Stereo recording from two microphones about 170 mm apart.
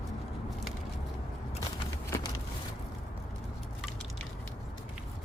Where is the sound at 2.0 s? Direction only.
15° left (ahead or behind).